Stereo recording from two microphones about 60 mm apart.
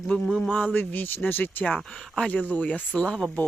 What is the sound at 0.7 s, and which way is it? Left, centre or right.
Speech, left.